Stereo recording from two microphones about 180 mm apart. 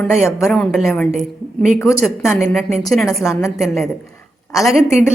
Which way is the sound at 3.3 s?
15° left (ahead or behind).